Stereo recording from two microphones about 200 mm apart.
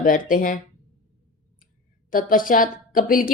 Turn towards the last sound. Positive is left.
turn(degrees=45)  # may be behind; listen again after turning